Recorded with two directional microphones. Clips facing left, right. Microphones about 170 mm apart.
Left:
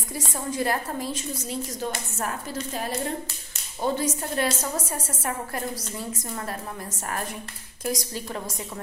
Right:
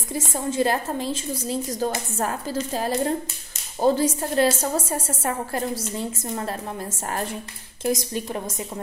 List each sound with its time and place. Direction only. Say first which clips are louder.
0.5 s a woman's voice: right 4 dB; 25° right (ahead or behind)
7.8 s a woman's voice: right 5 dB; 25° right (ahead or behind)